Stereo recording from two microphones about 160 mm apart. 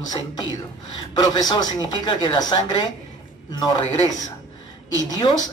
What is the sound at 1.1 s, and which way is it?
Speech, 25° left (ahead or behind).